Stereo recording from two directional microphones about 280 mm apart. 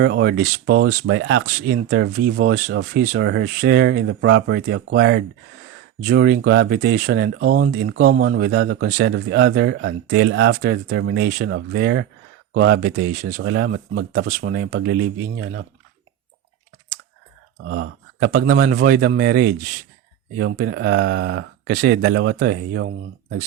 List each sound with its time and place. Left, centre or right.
0.0 s speech: right
17.7 s speech: right